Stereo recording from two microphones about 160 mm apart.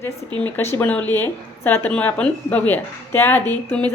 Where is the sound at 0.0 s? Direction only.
15° left (ahead or behind).